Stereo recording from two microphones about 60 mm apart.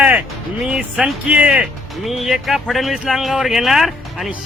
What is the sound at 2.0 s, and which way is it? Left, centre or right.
Speech, centre.